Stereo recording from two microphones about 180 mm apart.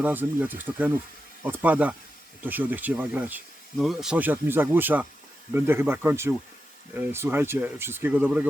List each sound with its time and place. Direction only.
0.0 s speech: 10° right (ahead or behind)